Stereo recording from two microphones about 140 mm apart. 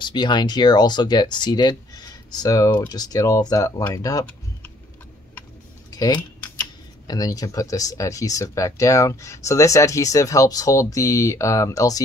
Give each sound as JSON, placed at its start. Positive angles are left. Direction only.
{"t": 0.0, "sound": "speech", "side_deg": 30}
{"t": 5.9, "sound": "a sound", "side_deg": 30}
{"t": 7.1, "sound": "speech", "side_deg": 25}